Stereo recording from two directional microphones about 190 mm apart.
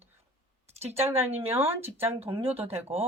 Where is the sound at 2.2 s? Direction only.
30° right (ahead or behind).